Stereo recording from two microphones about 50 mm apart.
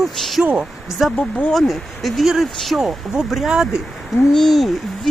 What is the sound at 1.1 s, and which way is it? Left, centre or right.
Speech, left.